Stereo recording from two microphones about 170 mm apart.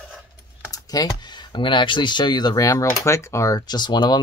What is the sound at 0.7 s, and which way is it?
Speech, 20° left (ahead or behind).